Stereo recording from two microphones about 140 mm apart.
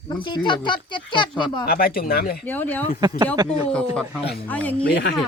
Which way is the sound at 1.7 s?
90° left.